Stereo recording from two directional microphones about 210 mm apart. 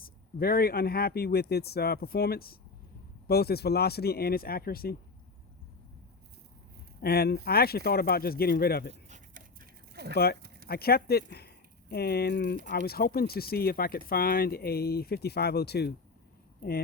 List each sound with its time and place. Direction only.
0.0 s speech: 45° left (ahead or behind)
7.0 s speech: 50° left (ahead or behind)
8.9 s dog: 35° right (ahead or behind); by 10.2 s 50° right (ahead or behind)
10.7 s speech: 45° left (ahead or behind)